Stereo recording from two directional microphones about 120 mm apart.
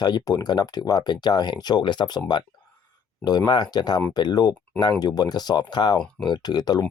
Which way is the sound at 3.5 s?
35° left (ahead or behind).